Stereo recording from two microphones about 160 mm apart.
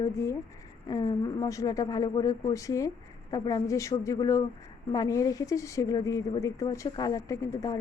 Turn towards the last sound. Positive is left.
turn(degrees=20)  # may be behind; listen again after turning